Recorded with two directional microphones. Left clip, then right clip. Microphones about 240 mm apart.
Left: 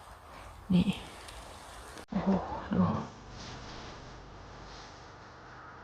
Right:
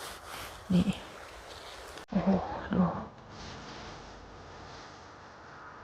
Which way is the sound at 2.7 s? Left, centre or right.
Centre.